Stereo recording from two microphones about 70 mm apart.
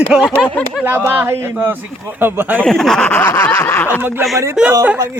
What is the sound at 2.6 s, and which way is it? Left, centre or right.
Speech, centre.